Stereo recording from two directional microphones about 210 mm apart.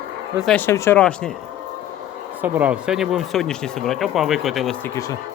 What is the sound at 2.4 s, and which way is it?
Speech, 5° right (ahead or behind).